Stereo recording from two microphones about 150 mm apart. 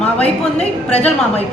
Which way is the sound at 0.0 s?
45° left (ahead or behind).